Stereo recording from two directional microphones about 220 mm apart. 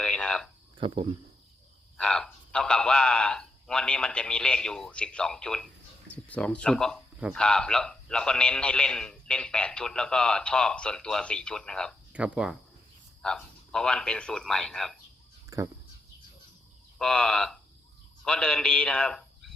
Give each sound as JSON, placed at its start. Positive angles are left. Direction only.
{"t": 0.0, "sound": "a sound", "side_deg": 5}
{"t": 0.8, "sound": "speech", "side_deg": -25}
{"t": 2.0, "sound": "a man's voice", "side_deg": 5}
{"t": 15.4, "sound": "speech", "side_deg": -15}
{"t": 17.0, "sound": "a man's voice", "side_deg": 5}